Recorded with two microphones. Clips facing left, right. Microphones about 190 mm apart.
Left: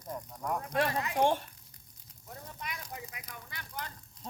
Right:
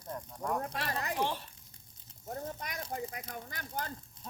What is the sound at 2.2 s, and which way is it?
Speech, 45° right (ahead or behind).